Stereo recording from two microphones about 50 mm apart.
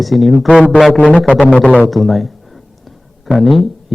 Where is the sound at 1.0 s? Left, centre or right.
Left.